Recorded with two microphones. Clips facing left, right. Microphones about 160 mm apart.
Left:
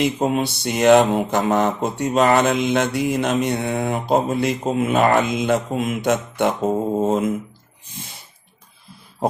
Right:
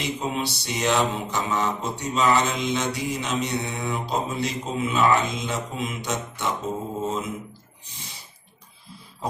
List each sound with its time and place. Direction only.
0.0 s mantra: 55° left (ahead or behind)